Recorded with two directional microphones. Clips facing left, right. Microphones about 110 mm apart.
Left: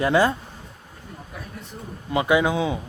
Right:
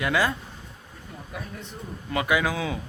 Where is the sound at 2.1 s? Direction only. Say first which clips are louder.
Left 5 dB; 25° left (ahead or behind).